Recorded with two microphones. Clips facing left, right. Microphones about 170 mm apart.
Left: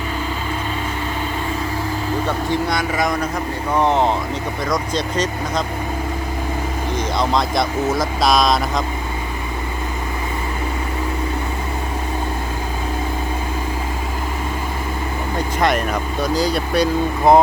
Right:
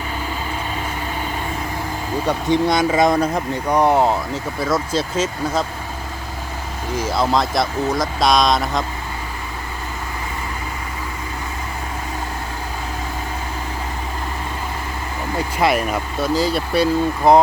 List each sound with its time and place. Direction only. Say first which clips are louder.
2.2 s speech: right 7 dB; 20° right (ahead or behind)
3.7 s speech: right 1 dB; 10° right (ahead or behind)
6.9 s speech: right 2 dB; 5° right (ahead or behind)
15.4 s speech: right 1 dB; 5° right (ahead or behind)